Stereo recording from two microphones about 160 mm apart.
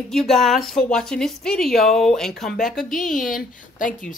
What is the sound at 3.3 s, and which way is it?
Speech, 55° left (ahead or behind).